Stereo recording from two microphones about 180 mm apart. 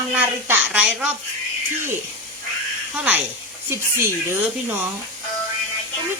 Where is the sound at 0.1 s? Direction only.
10° right (ahead or behind).